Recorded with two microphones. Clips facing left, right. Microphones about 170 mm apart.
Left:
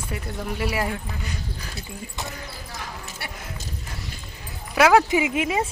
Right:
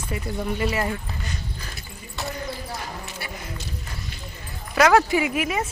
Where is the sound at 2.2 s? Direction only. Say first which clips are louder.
Right 4 dB; 20° left (ahead or behind).